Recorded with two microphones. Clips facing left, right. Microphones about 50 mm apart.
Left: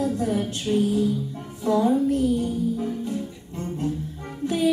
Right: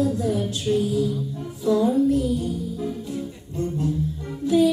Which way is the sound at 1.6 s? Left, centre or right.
Left.